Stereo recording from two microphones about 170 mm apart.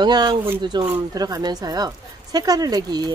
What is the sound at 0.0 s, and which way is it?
Speech, 25° right (ahead or behind).